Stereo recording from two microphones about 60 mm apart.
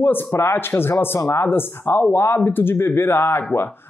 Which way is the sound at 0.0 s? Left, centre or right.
Left.